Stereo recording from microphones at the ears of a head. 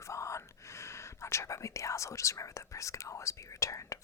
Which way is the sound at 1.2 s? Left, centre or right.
Left.